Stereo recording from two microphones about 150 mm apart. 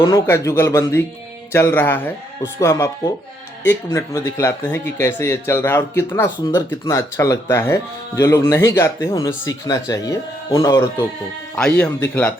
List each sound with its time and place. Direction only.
0.0 s speech: 20° left (ahead or behind)
11.5 s speech: 10° left (ahead or behind)